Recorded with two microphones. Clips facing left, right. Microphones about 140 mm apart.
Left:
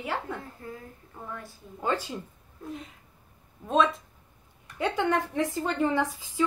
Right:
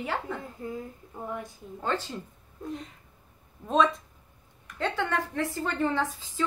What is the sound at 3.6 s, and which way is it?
Speech, centre (ahead or behind).